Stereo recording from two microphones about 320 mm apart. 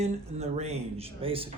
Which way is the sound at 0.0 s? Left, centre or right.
Centre.